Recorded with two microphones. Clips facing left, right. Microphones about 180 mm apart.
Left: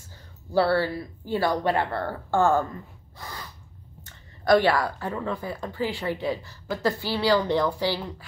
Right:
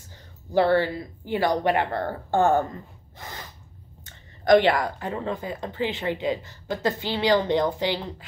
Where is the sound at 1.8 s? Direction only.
45° right (ahead or behind).